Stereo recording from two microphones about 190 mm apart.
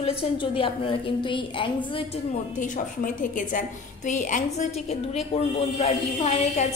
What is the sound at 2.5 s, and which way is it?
A woman's voice, 45° left (ahead or behind).